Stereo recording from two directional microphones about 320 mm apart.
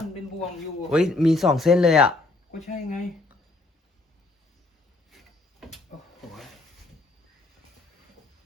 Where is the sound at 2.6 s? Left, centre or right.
Left.